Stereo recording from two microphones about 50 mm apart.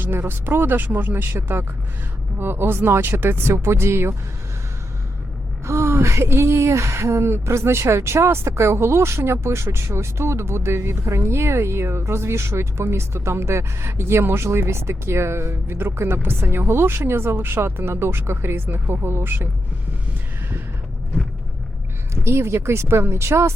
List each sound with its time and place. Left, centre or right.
0.0 s speech: right
1.3 s speech: right
5.6 s speech: right
22.1 s speech: right